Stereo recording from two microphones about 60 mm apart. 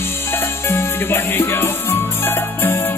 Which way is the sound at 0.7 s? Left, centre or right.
Left.